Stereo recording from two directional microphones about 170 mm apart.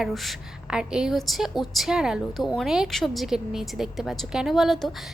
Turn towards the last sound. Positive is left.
turn(degrees=0)  # may be behind; listen again after turning